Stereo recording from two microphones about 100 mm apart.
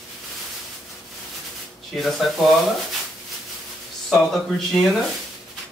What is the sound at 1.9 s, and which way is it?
Speech, centre (ahead or behind).